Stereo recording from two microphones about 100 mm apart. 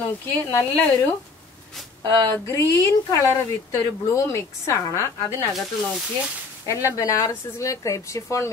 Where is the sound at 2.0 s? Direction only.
45° right (ahead or behind).